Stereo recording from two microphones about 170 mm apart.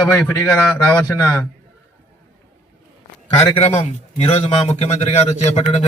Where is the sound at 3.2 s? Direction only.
40° left (ahead or behind).